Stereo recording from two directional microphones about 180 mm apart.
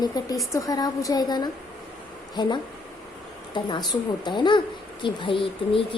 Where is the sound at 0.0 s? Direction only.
20° left (ahead or behind).